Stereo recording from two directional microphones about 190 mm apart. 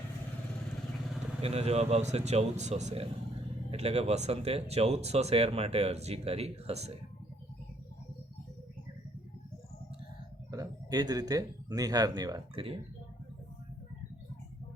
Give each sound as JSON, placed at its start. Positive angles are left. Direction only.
{"t": 1.4, "sound": "speech", "side_deg": -30}
{"t": 10.5, "sound": "speech", "side_deg": -20}